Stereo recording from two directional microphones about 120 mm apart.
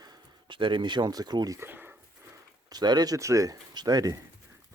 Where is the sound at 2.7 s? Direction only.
35° right (ahead or behind).